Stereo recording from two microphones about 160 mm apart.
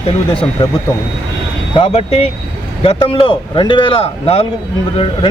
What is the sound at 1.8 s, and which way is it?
Speech, 40° left (ahead or behind).